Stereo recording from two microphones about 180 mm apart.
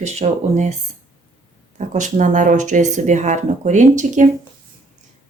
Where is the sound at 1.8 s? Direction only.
45° right (ahead or behind).